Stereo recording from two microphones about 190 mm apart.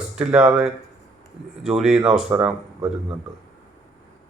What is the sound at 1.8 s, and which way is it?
Speech, 5° right (ahead or behind).